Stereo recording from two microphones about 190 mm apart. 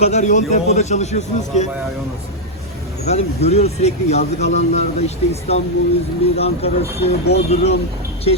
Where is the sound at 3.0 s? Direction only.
35° left (ahead or behind).